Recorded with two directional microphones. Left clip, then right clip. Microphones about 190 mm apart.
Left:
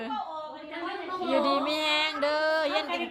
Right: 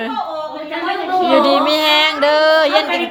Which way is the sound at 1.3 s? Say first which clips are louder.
Right 11 dB; centre (ahead or behind).